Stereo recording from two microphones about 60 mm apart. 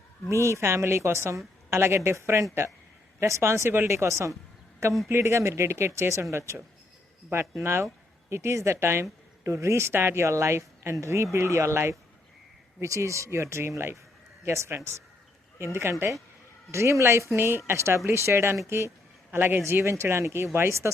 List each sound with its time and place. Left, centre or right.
0.4 s speech: right
3.8 s speech: right
7.6 s speech: right
9.4 s speech: right
19.3 s a man's voice: right
19.6 s speech: right